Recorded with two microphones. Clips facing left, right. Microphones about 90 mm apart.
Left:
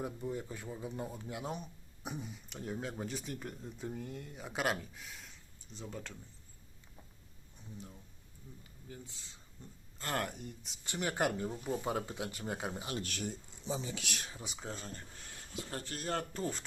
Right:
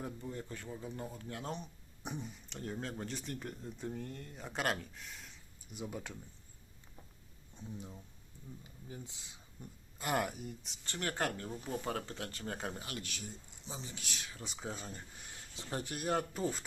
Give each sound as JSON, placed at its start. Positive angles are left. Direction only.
{"t": 0.0, "sound": "speech", "side_deg": 15}
{"t": 5.7, "sound": "speech", "side_deg": -10}
{"t": 7.5, "sound": "speech", "side_deg": -20}
{"t": 10.8, "sound": "speech", "side_deg": 15}
{"t": 13.0, "sound": "speech", "side_deg": 50}
{"t": 13.9, "sound": "speech", "side_deg": 75}
{"t": 14.4, "sound": "speech", "side_deg": 0}
{"t": 15.3, "sound": "speech", "side_deg": -20}